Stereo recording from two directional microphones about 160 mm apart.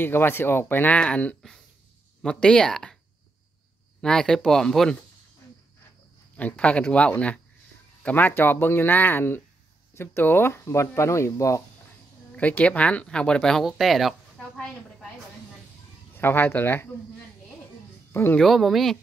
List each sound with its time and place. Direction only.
0.0 s speech: 15° left (ahead or behind)
4.0 s speech: 5° left (ahead or behind)
6.3 s speech: 10° left (ahead or behind)
12.4 s speech: 10° left (ahead or behind)
16.2 s speech: 15° left (ahead or behind)
18.1 s speech: 15° left (ahead or behind)
18.4 s speech: centre (ahead or behind)